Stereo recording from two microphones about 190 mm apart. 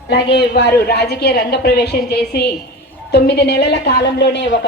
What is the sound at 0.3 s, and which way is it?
Speech, 60° left (ahead or behind).